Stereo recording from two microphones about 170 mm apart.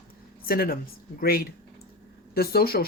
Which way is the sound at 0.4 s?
60° left (ahead or behind).